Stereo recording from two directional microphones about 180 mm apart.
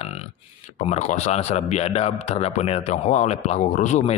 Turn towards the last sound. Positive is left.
turn(degrees=40)  # may be behind; listen again after turning